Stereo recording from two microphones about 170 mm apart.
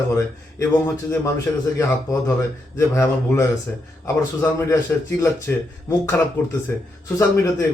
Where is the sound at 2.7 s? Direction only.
15° left (ahead or behind).